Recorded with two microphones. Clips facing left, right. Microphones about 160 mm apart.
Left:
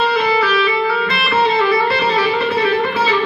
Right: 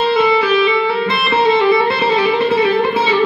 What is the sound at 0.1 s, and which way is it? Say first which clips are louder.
Music: right 3 dB; 25° right (ahead or behind).